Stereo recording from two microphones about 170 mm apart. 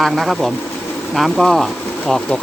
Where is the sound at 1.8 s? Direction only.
5° left (ahead or behind).